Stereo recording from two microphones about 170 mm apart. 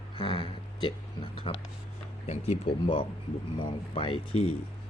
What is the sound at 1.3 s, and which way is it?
Speech, 30° left (ahead or behind).